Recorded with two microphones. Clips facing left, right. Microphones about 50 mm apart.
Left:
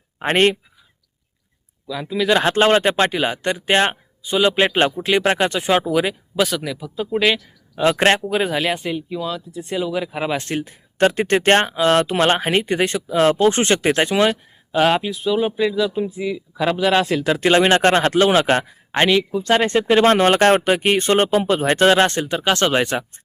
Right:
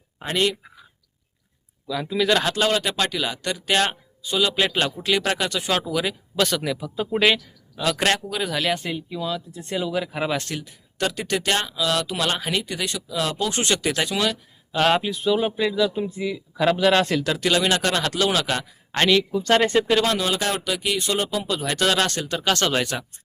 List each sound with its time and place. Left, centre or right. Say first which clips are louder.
0.2 s speech: left 7 dB; left
1.9 s speech: left 3 dB; centre
2.4 s speech: left 7 dB; left; by 6.6 s centre
6.6 s speech: even; centre
7.8 s speech: left 6 dB; left
8.8 s speech: left 4 dB; centre
10.4 s speech: left 7 dB; left
14.8 s speech: left 3 dB; centre
17.2 s speech: left 6 dB; left
18.9 s speech: left 3 dB; centre
19.9 s speech: left 7 dB; left